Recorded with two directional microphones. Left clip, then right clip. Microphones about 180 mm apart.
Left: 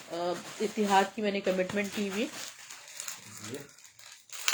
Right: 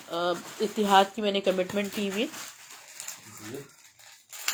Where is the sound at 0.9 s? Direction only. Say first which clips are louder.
Right 5 dB; 20° right (ahead or behind).